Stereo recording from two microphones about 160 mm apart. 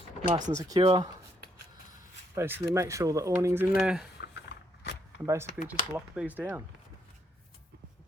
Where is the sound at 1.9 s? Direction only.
15° right (ahead or behind).